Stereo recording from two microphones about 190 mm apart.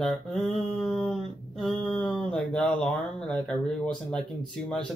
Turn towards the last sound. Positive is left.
turn(degrees=5)  # may be behind; listen again after turning